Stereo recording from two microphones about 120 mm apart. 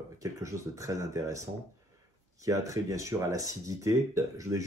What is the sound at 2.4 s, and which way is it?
Speech, 30° right (ahead or behind).